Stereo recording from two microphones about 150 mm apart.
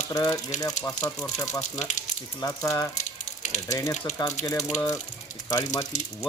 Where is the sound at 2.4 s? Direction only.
20° left (ahead or behind).